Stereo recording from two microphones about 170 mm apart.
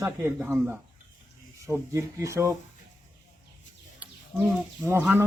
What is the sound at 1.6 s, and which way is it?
Speech, 15° right (ahead or behind).